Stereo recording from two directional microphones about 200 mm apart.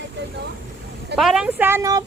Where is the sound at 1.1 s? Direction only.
Centre (ahead or behind).